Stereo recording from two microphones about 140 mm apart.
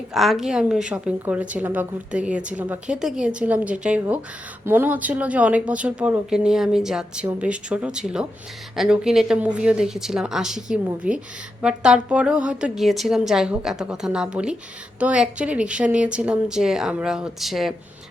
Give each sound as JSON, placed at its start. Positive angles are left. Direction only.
{"t": 0.1, "sound": "a woman's voice", "side_deg": 0}